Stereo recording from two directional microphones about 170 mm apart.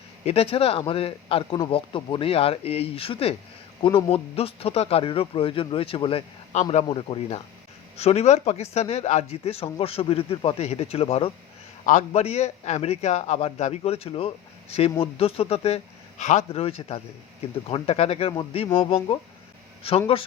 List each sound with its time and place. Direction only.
0.3 s speech: 35° left (ahead or behind)
20.1 s speech: 35° left (ahead or behind)